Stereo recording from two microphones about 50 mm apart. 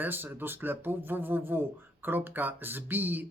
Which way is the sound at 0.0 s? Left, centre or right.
Right.